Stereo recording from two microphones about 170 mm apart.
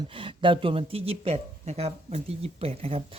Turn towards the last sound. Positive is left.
turn(degrees=-35)  # may be behind; listen again after turning